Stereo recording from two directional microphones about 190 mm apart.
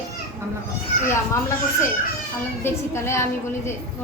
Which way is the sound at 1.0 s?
15° left (ahead or behind).